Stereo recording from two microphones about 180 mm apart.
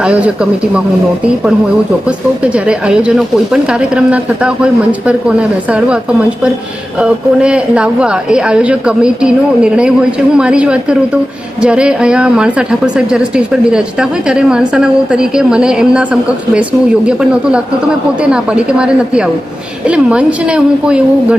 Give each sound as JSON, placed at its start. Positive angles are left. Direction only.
{"t": 2.0, "sound": "speech", "side_deg": -5}
{"t": 7.0, "sound": "speech", "side_deg": -5}
{"t": 17.1, "sound": "a woman's voice", "side_deg": -5}